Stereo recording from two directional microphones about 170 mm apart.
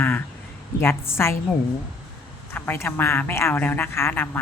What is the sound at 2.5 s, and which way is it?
A woman's voice, 15° left (ahead or behind).